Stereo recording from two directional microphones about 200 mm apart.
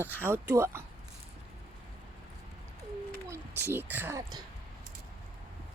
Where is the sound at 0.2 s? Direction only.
10° right (ahead or behind).